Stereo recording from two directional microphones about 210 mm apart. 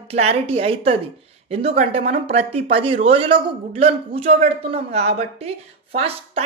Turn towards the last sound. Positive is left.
turn(degrees=-30)  # may be behind; listen again after turning